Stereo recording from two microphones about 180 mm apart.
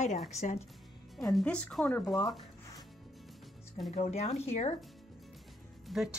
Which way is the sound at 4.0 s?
35° left (ahead or behind).